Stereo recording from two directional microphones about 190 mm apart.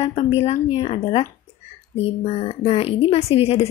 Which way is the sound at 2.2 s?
30° left (ahead or behind).